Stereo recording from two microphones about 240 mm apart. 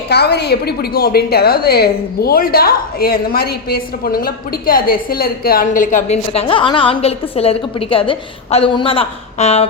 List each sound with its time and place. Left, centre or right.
0.1 s a woman's voice: left